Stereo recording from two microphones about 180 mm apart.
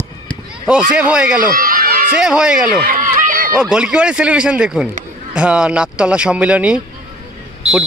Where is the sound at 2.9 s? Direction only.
45° right (ahead or behind).